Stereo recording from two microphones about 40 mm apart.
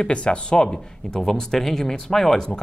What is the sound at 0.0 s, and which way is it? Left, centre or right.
Speech, left.